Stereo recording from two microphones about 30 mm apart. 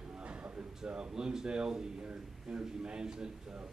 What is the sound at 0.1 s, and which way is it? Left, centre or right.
Music, right.